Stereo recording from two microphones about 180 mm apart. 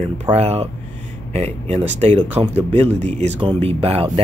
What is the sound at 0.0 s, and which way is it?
Speech, 35° right (ahead or behind).